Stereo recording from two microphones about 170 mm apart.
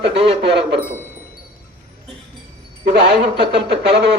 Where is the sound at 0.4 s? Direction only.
90° right.